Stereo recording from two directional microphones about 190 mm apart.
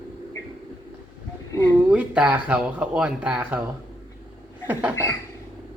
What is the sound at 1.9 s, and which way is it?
Speech, 5° right (ahead or behind).